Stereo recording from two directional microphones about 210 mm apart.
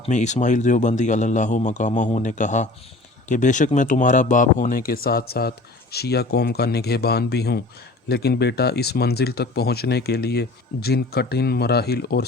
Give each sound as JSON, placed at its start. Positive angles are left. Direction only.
{"t": 0.0, "sound": "a man's voice", "side_deg": 35}